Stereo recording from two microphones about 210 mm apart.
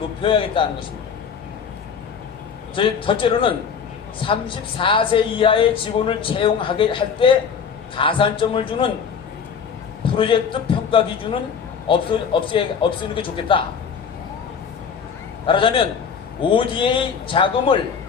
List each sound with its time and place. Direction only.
0.2 s a woman's voice: 25° left (ahead or behind)
2.7 s a woman's voice: 25° left (ahead or behind)
10.0 s a man's voice: 25° left (ahead or behind)
15.4 s a woman's voice: 25° left (ahead or behind)